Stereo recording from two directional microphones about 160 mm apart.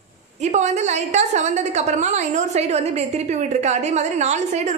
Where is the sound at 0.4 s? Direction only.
45° right (ahead or behind).